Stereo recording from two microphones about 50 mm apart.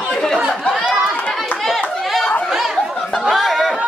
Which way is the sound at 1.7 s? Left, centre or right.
Centre.